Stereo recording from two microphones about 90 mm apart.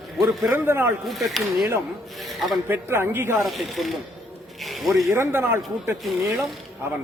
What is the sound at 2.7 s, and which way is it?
Speech, 25° right (ahead or behind).